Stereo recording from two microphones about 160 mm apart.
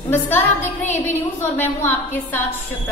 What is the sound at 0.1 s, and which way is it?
A woman's voice, 15° left (ahead or behind).